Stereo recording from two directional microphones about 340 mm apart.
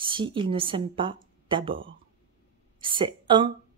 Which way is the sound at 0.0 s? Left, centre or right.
Centre.